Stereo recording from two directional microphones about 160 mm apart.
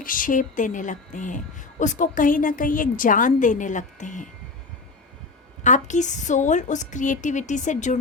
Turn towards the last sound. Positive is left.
turn(degrees=50)  # may be behind; listen again after turning